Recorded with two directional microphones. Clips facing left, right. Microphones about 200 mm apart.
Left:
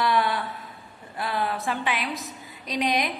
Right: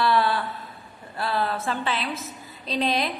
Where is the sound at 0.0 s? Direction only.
15° left (ahead or behind).